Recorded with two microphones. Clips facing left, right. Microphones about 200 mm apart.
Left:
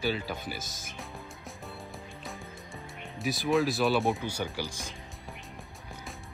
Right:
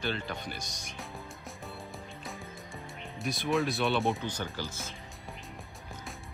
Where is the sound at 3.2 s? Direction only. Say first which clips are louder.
Left 3 dB; centre (ahead or behind).